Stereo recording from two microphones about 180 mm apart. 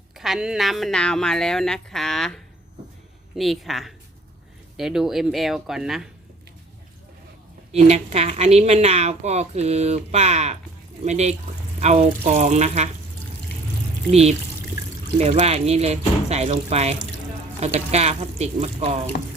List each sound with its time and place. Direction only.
0.2 s a woman's voice: 5° right (ahead or behind)
7.7 s a woman's voice: 35° right (ahead or behind)
14.1 s a woman's voice: 35° right (ahead or behind)